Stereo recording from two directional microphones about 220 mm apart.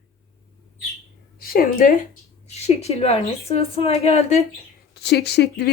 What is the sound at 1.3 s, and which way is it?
Speech, 40° left (ahead or behind).